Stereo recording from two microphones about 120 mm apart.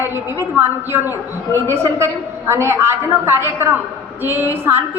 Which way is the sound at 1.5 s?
25° right (ahead or behind).